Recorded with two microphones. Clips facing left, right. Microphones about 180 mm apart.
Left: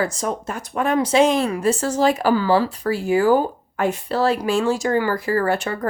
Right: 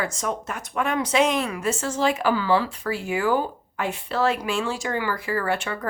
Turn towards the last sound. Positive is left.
turn(degrees=40)  # may be behind; listen again after turning